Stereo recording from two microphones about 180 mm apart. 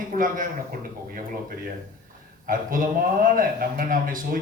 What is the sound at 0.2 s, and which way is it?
A man's voice, 50° right (ahead or behind).